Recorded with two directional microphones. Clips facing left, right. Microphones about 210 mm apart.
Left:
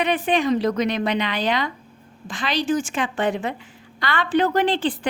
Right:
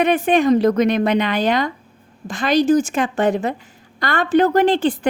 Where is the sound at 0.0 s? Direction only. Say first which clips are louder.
Right 5 dB; 45° right (ahead or behind).